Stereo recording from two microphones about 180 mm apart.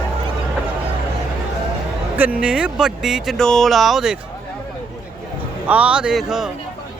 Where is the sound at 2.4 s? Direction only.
5° right (ahead or behind).